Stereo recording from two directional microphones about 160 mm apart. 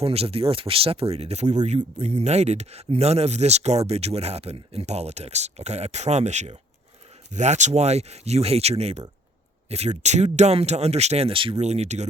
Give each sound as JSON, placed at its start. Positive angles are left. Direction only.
{"t": 0.0, "sound": "speech", "side_deg": -40}